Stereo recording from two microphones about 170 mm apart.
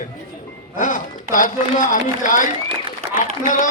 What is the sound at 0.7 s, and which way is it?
A man's voice, 50° left (ahead or behind).